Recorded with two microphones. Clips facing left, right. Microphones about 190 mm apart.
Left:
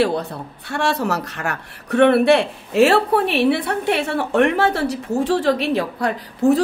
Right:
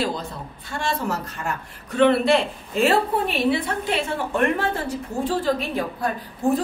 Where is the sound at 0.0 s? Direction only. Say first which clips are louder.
Left 7 dB; 65° left (ahead or behind).